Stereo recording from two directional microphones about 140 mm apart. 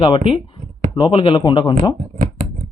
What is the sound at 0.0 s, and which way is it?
Speech, 40° left (ahead or behind).